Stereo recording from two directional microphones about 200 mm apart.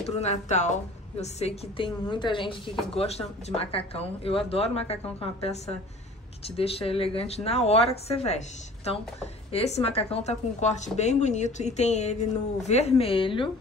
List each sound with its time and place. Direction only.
0.0 s a woman's voice: 30° left (ahead or behind)